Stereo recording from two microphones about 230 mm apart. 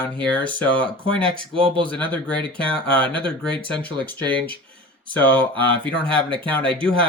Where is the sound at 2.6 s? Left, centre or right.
Centre.